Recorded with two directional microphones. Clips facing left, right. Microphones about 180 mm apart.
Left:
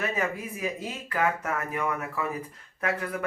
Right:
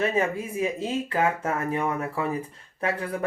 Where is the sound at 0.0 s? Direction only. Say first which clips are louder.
Right 5 dB; 25° right (ahead or behind).